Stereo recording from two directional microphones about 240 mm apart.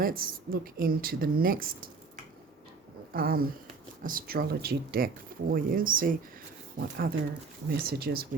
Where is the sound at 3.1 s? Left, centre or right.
Right.